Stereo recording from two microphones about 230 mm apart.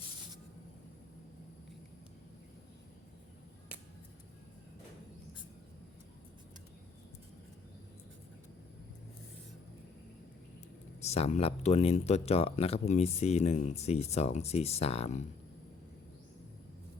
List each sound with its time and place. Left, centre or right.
11.0 s speech: left